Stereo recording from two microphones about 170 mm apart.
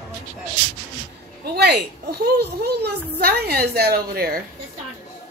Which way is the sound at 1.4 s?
70° right (ahead or behind).